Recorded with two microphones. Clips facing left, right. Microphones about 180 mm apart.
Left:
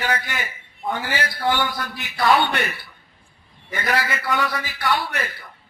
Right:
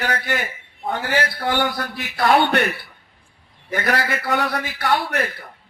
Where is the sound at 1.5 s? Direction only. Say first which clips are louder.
Right 3 dB; 50° right (ahead or behind).